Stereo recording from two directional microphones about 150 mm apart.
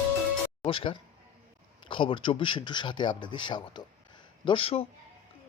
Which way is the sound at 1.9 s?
35° left (ahead or behind).